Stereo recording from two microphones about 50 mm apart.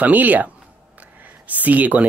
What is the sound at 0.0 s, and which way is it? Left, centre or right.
Speech, right.